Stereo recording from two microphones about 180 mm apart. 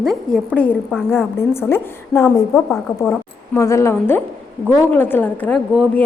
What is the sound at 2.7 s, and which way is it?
Speech, centre (ahead or behind).